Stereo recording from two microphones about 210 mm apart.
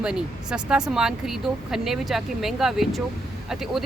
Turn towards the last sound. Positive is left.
turn(degrees=0)  # may be behind; listen again after turning